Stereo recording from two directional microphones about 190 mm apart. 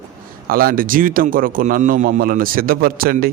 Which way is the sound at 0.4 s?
50° right (ahead or behind).